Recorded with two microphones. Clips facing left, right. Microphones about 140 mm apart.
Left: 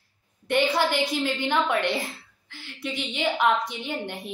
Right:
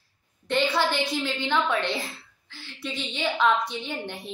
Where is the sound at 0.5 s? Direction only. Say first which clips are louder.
Left 1 dB; 15° left (ahead or behind).